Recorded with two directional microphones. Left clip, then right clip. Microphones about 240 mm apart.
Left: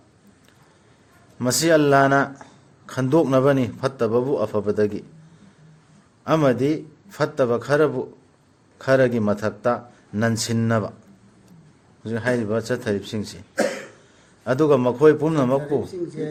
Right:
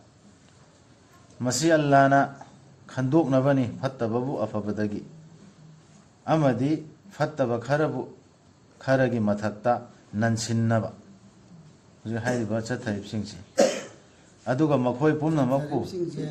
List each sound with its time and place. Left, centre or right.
1.4 s a man's voice: left
6.2 s a man's voice: left
12.0 s a man's voice: left
14.4 s a man's voice: left